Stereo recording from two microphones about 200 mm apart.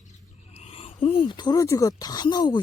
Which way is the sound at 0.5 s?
30° left (ahead or behind).